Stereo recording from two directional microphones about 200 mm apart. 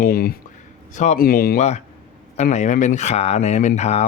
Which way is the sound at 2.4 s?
35° left (ahead or behind).